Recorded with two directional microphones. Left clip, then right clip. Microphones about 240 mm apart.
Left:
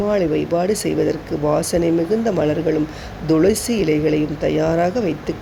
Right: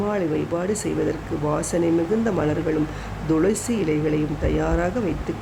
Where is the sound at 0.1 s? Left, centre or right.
Centre.